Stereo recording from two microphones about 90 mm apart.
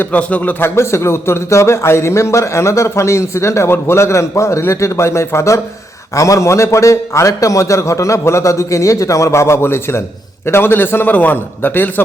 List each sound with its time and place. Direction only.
0.0 s speech: 15° left (ahead or behind)
0.8 s a man's voice: 30° left (ahead or behind)